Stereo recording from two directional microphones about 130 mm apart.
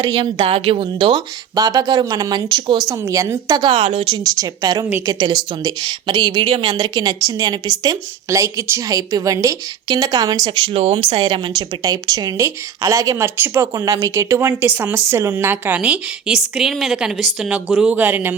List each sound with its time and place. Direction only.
0.0 s a woman's voice: 30° right (ahead or behind)
0.3 s a woman's voice: 50° right (ahead or behind)
2.8 s a woman's voice: 25° right (ahead or behind); by 4.2 s 45° right (ahead or behind)
4.2 s a woman's voice: 30° right (ahead or behind)